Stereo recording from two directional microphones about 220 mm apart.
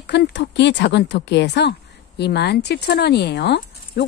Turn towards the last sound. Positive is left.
turn(degrees=50)  # may be behind; listen again after turning